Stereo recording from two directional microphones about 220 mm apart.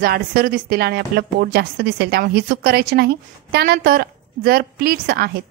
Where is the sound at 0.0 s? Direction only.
40° right (ahead or behind).